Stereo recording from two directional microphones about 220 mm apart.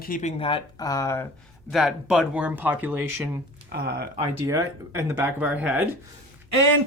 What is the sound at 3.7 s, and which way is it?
Speech, 45° right (ahead or behind).